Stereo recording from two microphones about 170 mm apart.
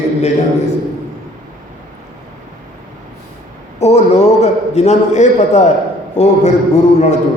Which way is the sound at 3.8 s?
40° left (ahead or behind).